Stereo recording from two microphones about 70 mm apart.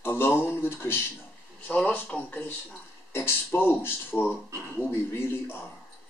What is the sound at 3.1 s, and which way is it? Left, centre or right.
Speech, left.